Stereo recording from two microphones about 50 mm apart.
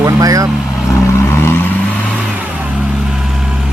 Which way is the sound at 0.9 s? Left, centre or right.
Left.